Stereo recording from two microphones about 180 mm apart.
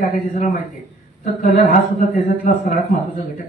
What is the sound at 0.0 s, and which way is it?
Speech, 45° left (ahead or behind).